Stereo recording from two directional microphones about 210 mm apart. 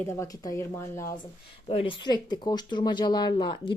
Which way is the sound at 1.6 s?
25° left (ahead or behind).